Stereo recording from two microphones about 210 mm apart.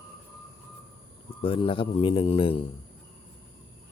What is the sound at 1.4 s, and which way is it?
Speech, 25° left (ahead or behind).